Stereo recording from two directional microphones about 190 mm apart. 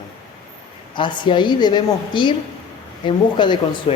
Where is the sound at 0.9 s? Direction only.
25° left (ahead or behind).